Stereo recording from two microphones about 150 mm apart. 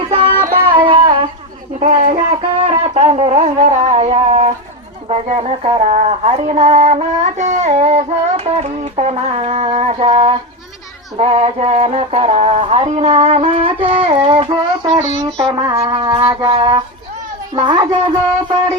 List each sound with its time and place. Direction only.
0.7 s a sound: 35° right (ahead or behind)
1.8 s music: 50° right (ahead or behind)
2.1 s music: 35° right (ahead or behind)
2.6 s shofar: 45° right (ahead or behind)
5.0 s speech: 40° right (ahead or behind)
6.5 s music: 45° right (ahead or behind)
13.8 s child singing: 35° right (ahead or behind)
15.4 s a sound: 25° right (ahead or behind)
17.5 s speech: 30° right (ahead or behind)